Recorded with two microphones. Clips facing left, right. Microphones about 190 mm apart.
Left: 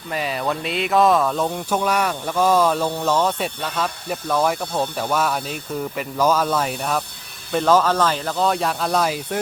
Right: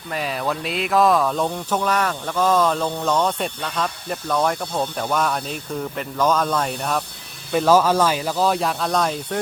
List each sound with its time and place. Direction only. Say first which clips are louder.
0.1 s speech: left 1 dB; centre (ahead or behind)